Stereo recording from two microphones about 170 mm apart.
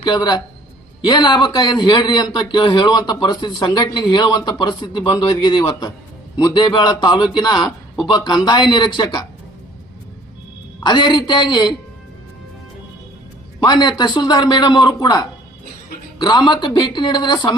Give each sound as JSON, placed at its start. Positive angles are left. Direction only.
{"t": 0.0, "sound": "a man's voice", "side_deg": 25}
{"t": 10.8, "sound": "a man's voice", "side_deg": 25}
{"t": 13.6, "sound": "a man's voice", "side_deg": 25}